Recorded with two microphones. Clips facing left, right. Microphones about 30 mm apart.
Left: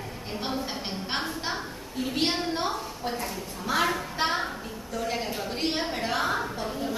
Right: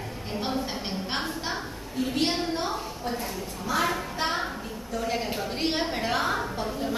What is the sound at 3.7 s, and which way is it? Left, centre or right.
Speech, left.